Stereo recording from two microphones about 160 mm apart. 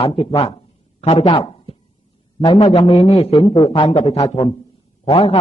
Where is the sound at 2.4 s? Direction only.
20° left (ahead or behind).